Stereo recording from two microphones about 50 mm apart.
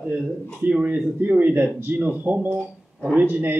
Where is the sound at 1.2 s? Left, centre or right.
Right.